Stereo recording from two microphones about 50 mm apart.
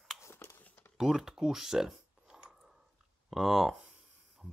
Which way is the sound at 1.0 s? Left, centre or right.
Centre.